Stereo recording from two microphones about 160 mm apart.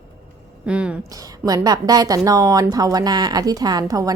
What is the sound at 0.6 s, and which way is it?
Speech, 5° right (ahead or behind).